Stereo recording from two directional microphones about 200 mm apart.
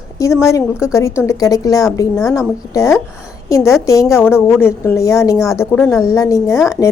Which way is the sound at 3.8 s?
15° left (ahead or behind).